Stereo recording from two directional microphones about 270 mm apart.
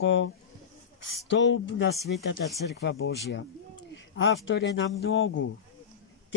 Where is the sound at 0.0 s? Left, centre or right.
Left.